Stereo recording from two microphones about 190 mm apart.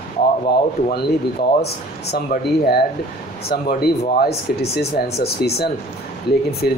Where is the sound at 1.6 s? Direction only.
55° left (ahead or behind).